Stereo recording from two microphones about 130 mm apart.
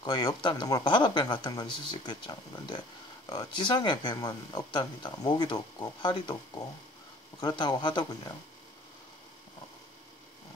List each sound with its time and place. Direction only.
0.0 s speech: 35° left (ahead or behind)
7.3 s speech: 35° left (ahead or behind)